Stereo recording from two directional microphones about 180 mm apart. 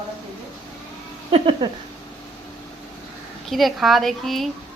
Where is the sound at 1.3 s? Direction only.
30° right (ahead or behind).